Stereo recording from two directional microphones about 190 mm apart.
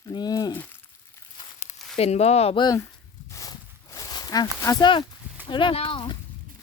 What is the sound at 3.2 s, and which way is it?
Walk, 20° left (ahead or behind).